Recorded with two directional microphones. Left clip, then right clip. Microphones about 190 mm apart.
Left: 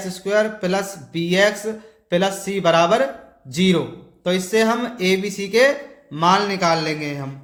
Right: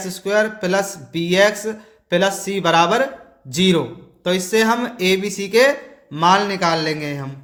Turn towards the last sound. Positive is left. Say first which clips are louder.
# right 2 dB
turn(degrees=-20)  # may be behind; listen again after turning